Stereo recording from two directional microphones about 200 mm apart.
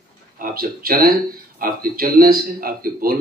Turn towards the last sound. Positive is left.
turn(degrees=-45)  # may be behind; listen again after turning